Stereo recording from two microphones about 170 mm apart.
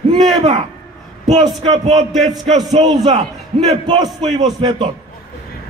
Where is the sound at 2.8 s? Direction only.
30° right (ahead or behind).